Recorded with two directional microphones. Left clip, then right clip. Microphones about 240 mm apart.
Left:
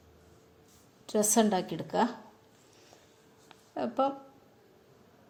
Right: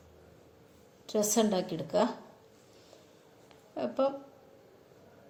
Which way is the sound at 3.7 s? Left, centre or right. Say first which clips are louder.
Left 1 dB; left.